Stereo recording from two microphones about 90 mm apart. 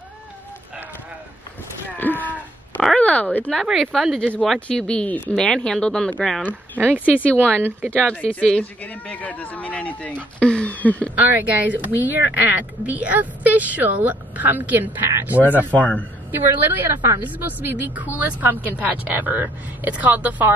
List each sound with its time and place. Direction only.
2.0 s speech: 20° left (ahead or behind)
3.8 s speech: centre (ahead or behind)
7.6 s a woman's voice: 25° right (ahead or behind)
8.0 s speech: 15° left (ahead or behind)
11.1 s a woman's voice: 20° right (ahead or behind)
15.7 s speech: 15° left (ahead or behind)
16.3 s a woman's voice: 20° right (ahead or behind)